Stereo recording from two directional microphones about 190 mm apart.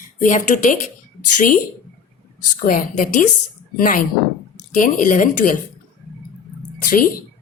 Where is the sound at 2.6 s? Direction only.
45° left (ahead or behind).